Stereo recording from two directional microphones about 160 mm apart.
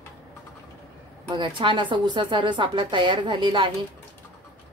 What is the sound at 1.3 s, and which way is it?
A woman's voice, 30° right (ahead or behind).